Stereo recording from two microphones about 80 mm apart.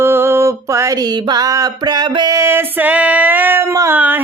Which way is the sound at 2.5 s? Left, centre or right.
Right.